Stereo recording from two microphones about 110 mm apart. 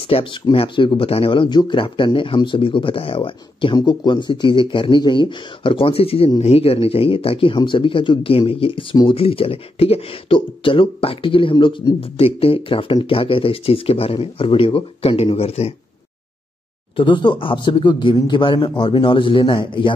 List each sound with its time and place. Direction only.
0.1 s speech: 55° left (ahead or behind)
11.5 s speech: 35° left (ahead or behind)
12.4 s speech: 55° left (ahead or behind)
16.9 s speech: 45° left (ahead or behind)